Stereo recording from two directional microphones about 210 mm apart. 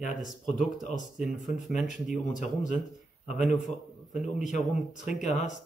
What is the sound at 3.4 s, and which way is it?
A man's voice, centre (ahead or behind).